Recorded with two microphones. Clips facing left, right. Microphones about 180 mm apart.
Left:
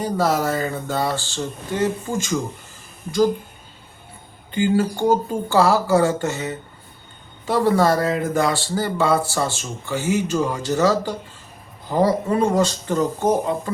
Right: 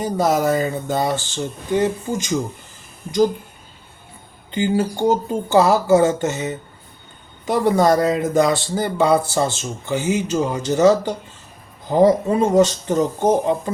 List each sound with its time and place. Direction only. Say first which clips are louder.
0.0 s a man's voice: right 2 dB; 20° right (ahead or behind)
4.5 s a man's voice: even; 20° right (ahead or behind)